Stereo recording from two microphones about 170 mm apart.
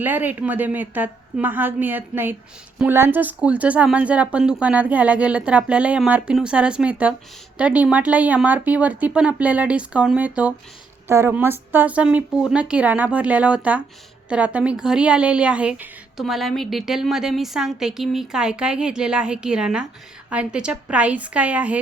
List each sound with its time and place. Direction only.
0.0 s a woman's voice: 10° right (ahead or behind)